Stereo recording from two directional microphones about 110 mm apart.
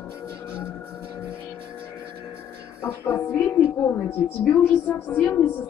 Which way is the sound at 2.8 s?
25° left (ahead or behind).